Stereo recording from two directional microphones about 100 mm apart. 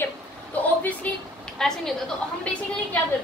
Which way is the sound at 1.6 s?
5° left (ahead or behind).